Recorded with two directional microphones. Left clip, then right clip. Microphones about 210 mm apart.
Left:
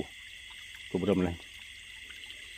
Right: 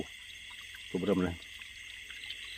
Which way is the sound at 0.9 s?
25° left (ahead or behind).